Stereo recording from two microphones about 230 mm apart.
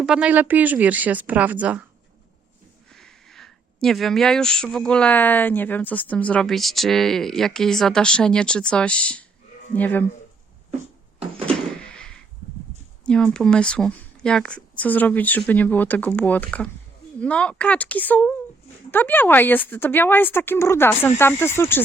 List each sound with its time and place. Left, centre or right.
0.0 s speech: centre
2.9 s speech: centre
11.4 s door: centre
13.1 s speech: centre